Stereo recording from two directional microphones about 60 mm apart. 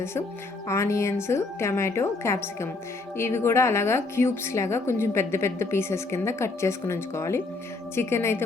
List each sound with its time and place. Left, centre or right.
0.7 s a woman's voice: left